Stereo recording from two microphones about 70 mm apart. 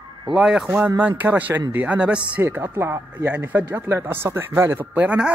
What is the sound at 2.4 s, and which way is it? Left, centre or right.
Speech, right.